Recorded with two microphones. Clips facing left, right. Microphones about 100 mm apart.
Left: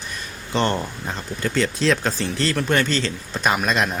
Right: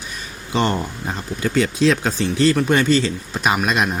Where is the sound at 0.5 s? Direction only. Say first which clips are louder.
Right 2 dB; 5° right (ahead or behind).